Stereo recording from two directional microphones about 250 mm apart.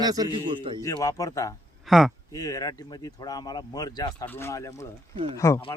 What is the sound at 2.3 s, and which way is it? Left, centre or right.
Speech, centre.